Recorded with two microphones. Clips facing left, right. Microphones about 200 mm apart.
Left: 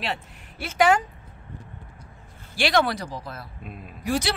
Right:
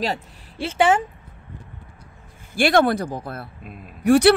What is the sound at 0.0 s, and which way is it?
Speech, 35° right (ahead or behind).